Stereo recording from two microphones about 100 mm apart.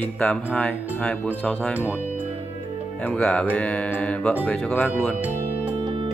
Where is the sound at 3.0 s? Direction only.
10° left (ahead or behind).